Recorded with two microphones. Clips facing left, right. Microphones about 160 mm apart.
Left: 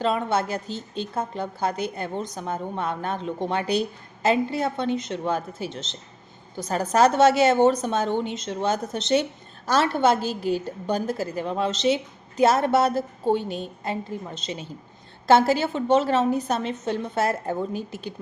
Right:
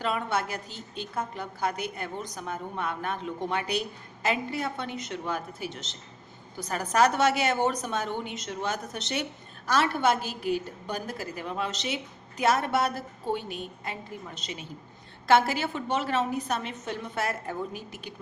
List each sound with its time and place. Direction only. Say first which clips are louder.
0.0 s a woman's voice: left 5 dB; 30° left (ahead or behind)